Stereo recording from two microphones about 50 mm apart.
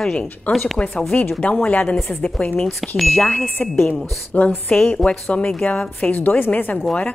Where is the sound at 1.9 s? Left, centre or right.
Centre.